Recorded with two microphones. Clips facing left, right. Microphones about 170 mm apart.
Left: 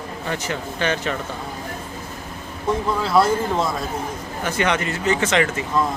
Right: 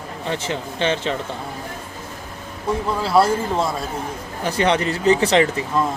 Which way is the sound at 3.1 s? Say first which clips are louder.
Right 1 dB; 30° right (ahead or behind).